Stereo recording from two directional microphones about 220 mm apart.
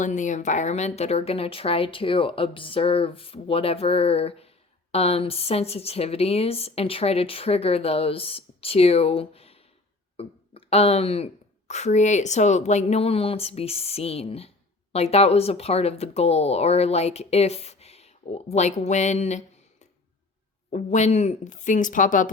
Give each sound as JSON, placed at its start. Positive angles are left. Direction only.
{"t": 0.0, "sound": "speech", "side_deg": 35}
{"t": 20.7, "sound": "speech", "side_deg": 30}